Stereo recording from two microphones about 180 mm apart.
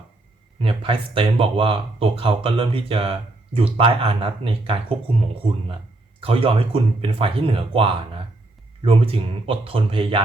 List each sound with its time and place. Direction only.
0.6 s speech: 30° right (ahead or behind)